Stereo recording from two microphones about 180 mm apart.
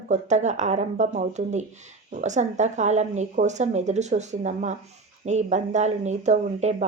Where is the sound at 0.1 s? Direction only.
40° right (ahead or behind).